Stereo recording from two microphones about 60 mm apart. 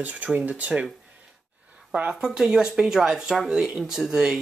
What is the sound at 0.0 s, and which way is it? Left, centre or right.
Speech, right.